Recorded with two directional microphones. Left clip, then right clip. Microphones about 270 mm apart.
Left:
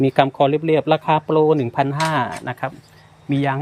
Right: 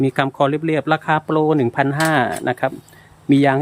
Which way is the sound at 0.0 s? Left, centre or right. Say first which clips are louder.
Left 2 dB; centre.